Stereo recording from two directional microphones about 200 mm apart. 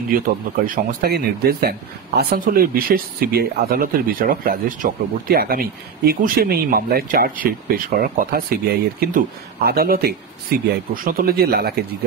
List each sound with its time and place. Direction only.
0.7 s speech: 50° right (ahead or behind)